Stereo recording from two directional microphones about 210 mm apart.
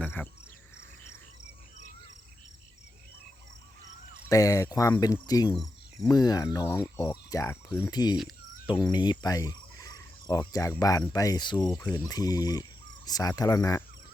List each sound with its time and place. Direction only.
0.0 s cricket: 5° left (ahead or behind)
4.3 s speech: 15° left (ahead or behind)
8.6 s cricket: 20° left (ahead or behind)
11.1 s speech: 20° left (ahead or behind)